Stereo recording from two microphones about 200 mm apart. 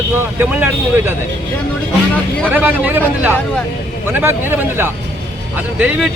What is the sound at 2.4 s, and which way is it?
A man's voice, 10° right (ahead or behind).